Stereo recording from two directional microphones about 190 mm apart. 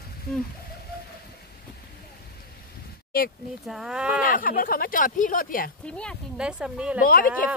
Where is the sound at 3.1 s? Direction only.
50° left (ahead or behind).